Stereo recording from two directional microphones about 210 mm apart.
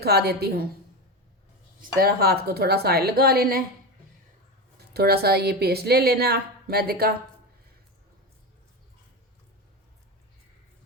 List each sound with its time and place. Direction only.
0.0 s a woman's voice: 50° right (ahead or behind)
1.8 s a woman's voice: 45° right (ahead or behind)
4.9 s a woman's voice: 50° right (ahead or behind)